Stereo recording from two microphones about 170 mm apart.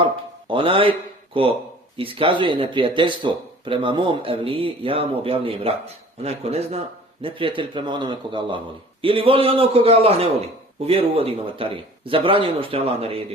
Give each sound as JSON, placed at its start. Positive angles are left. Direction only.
{"t": 0.0, "sound": "speech", "side_deg": -30}
{"t": 2.0, "sound": "speech", "side_deg": -30}